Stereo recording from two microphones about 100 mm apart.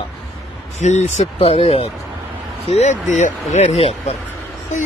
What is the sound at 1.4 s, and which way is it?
Speech, 75° left (ahead or behind).